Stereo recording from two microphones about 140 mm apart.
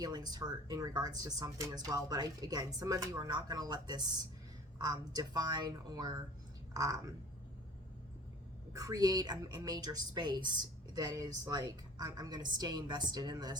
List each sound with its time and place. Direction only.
0.0 s speech: 30° right (ahead or behind)
8.7 s speech: 25° right (ahead or behind)